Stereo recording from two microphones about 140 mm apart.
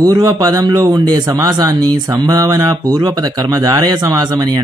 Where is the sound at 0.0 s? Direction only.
25° right (ahead or behind).